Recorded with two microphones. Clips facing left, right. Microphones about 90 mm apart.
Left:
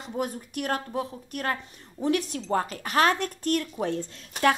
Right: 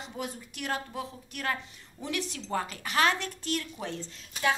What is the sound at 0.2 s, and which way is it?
A woman's voice, 45° left (ahead or behind).